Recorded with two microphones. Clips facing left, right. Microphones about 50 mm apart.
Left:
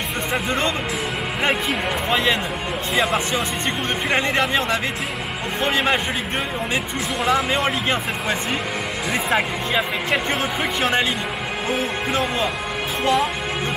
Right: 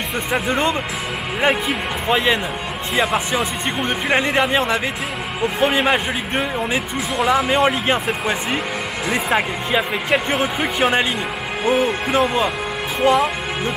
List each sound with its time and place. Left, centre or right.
1.4 s speech: centre
2.0 s speech: centre
7.6 s speech: centre
13.0 s speech: centre